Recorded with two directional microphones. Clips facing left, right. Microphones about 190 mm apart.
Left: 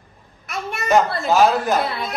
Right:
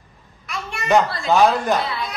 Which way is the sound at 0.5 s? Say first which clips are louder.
Left 2 dB; 50° left (ahead or behind).